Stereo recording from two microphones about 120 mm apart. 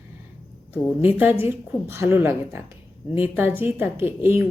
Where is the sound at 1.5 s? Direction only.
20° right (ahead or behind).